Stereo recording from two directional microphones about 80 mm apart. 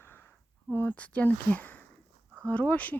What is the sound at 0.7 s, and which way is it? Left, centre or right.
Speech, left.